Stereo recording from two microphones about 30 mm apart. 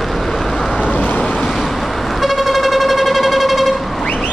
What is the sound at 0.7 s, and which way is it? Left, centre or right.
Vehicle, left.